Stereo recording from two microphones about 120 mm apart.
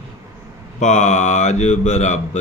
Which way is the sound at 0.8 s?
90° left.